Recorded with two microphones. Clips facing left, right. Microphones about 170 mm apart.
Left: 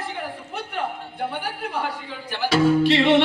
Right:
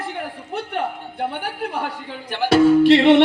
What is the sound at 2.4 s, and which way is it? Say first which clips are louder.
Music: right 5 dB; 60° right (ahead or behind).